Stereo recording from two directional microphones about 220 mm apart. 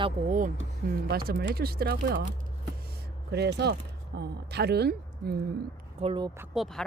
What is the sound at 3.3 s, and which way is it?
Speech, 50° right (ahead or behind).